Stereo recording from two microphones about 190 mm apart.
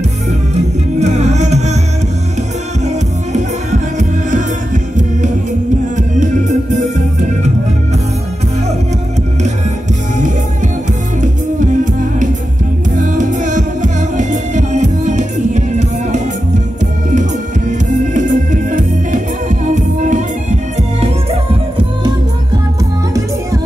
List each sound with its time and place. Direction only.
0.6 s music: 35° right (ahead or behind)
4.0 s music: 40° right (ahead or behind)
11.1 s music: 40° right (ahead or behind)